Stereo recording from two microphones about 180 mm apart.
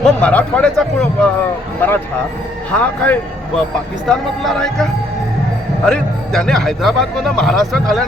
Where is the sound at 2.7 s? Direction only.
10° left (ahead or behind).